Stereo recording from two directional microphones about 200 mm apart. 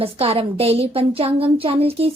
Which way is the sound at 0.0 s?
30° right (ahead or behind).